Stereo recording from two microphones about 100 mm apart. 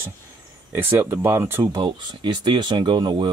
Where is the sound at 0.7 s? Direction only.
20° right (ahead or behind).